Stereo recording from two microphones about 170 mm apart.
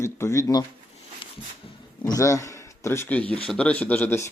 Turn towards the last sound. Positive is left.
turn(degrees=10)  # may be behind; listen again after turning